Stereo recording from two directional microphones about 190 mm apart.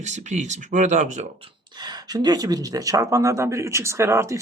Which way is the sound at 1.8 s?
20° right (ahead or behind).